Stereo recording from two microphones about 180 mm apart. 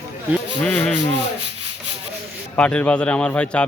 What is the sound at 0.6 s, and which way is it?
Speech, 5° left (ahead or behind).